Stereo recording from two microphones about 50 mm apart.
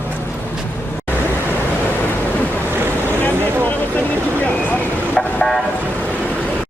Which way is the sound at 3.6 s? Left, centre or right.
Left.